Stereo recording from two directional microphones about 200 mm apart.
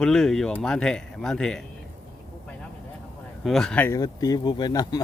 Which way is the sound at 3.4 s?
Centre (ahead or behind).